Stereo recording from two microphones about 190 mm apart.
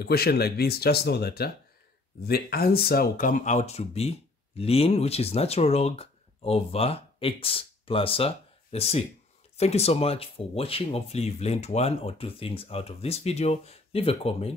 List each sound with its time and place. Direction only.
0.0 s speech: 55° left (ahead or behind); by 14.5 s 30° left (ahead or behind)